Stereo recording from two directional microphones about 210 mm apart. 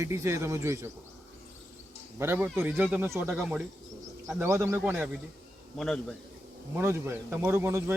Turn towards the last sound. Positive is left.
turn(degrees=-10)  # may be behind; listen again after turning